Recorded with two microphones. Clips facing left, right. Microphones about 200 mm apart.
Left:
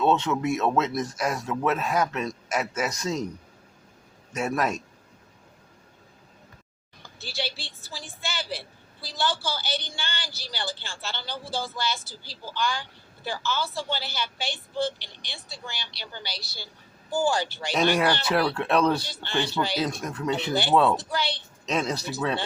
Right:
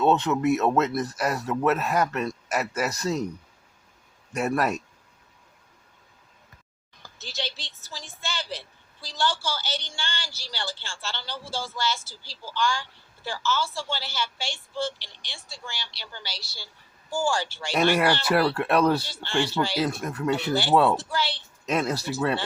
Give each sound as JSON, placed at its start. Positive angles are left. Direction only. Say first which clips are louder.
{"t": 0.0, "sound": "a man's voice", "louder": "right 2 dB", "side_deg": -5}
{"t": 4.4, "sound": "speech", "louder": "right 2 dB", "side_deg": -5}
{"t": 7.2, "sound": "vehicle", "louder": "left 2 dB", "side_deg": 10}
{"t": 9.0, "sound": "speech", "louder": "right 1 dB", "side_deg": 15}
{"t": 17.7, "sound": "a man's voice", "louder": "right 1 dB", "side_deg": -5}
{"t": 19.0, "sound": "speech", "louder": "even", "side_deg": 15}
{"t": 19.7, "sound": "a man's voice", "louder": "right 1 dB", "side_deg": -5}
{"t": 20.5, "sound": "speech", "louder": "even", "side_deg": 20}
{"t": 21.7, "sound": "speech", "louder": "right 2 dB", "side_deg": -5}